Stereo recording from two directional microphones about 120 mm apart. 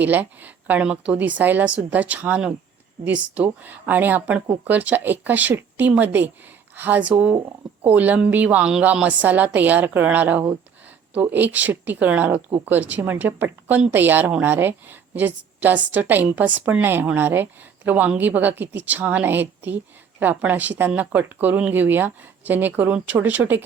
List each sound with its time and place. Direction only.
0.0 s a woman's voice: 15° right (ahead or behind)